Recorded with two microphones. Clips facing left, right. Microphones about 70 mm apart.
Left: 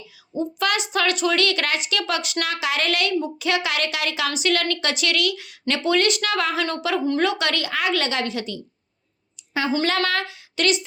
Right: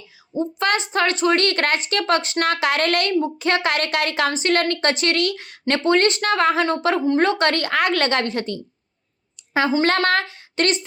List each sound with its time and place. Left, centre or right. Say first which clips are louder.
0.3 s speech: right 2 dB; right
2.5 s a woman's voice: right 5 dB; right
3.2 s a woman's voice: right 3 dB; right
4.3 s a woman's voice: right 3 dB; right